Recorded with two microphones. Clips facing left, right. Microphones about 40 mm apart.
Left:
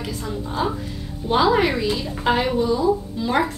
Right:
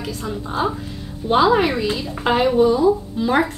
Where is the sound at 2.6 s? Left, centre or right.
Right.